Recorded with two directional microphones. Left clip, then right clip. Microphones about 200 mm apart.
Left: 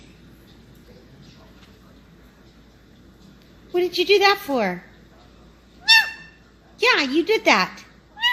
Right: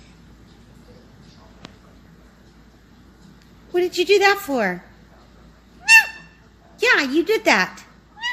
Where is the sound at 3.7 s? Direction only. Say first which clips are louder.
Right 1 dB; 5° right (ahead or behind).